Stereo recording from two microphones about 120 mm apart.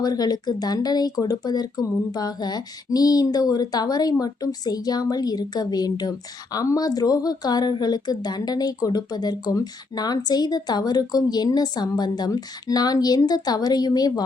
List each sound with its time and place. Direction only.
0.0 s speech: 35° left (ahead or behind)